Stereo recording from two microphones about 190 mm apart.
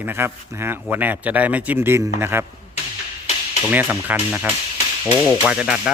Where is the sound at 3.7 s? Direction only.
10° right (ahead or behind).